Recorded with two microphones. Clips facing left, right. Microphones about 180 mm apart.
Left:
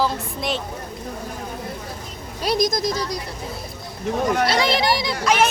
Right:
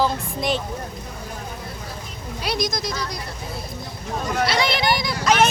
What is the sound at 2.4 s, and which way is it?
Speech, 45° left (ahead or behind).